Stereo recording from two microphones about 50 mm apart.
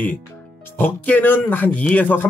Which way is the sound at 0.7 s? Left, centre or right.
Left.